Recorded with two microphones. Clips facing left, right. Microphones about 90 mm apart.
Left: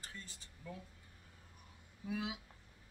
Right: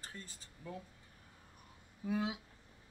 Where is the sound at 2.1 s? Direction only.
40° right (ahead or behind).